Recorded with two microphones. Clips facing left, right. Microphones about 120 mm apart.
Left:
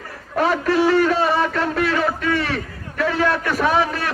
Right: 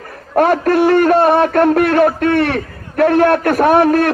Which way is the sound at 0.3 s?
55° right (ahead or behind).